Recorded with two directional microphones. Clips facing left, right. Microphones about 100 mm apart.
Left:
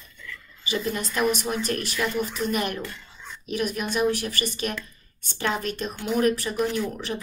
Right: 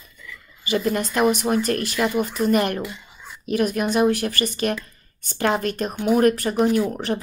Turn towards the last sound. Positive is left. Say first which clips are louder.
# right 7 dB
turn(degrees=-45)  # may be behind; listen again after turning